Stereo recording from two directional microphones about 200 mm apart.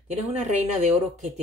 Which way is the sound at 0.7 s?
35° right (ahead or behind).